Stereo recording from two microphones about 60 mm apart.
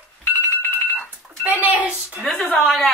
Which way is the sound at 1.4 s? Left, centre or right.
Right.